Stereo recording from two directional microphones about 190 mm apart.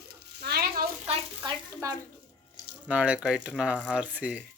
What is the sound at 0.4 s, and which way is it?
Sizzle, 55° right (ahead or behind).